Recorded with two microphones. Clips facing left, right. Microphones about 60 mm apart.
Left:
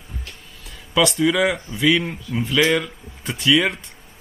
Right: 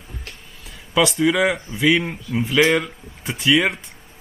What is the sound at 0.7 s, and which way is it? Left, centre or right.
Speech, centre.